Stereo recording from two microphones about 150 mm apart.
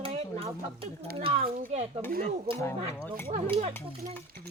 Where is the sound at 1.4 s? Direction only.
75° right (ahead or behind).